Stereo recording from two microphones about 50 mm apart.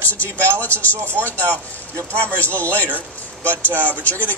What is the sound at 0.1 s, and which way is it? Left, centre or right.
A man's voice, left.